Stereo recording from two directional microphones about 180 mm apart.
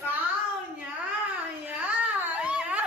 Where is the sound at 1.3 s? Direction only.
5° right (ahead or behind).